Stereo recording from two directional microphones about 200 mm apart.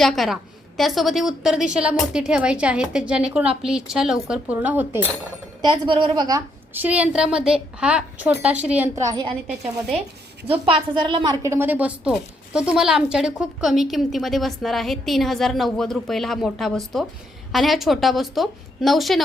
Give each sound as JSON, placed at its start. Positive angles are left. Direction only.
{"t": 0.0, "sound": "speech", "side_deg": 0}
{"t": 3.4, "sound": "a woman's voice", "side_deg": -30}
{"t": 3.7, "sound": "speech", "side_deg": -5}
{"t": 5.6, "sound": "a woman's voice", "side_deg": -25}
{"t": 10.4, "sound": "a woman's voice", "side_deg": -25}